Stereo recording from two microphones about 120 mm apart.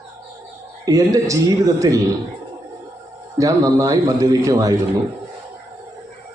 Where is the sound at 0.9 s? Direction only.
30° right (ahead or behind).